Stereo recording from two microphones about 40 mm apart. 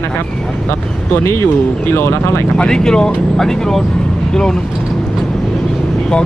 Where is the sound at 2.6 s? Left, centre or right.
Centre.